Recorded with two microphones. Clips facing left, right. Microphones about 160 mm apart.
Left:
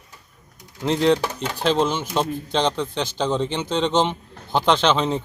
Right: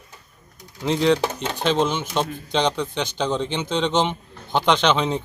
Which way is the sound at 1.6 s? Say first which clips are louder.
Left 1 dB; 5° left (ahead or behind).